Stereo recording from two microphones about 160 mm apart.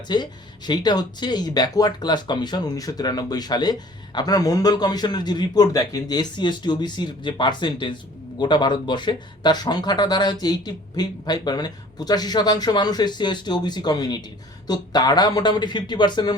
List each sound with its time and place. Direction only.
0.1 s speech: 25° left (ahead or behind)